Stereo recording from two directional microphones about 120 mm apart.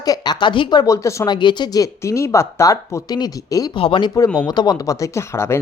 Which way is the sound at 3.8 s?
45° left (ahead or behind).